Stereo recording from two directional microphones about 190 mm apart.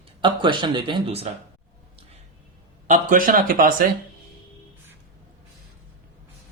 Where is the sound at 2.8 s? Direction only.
45° right (ahead or behind).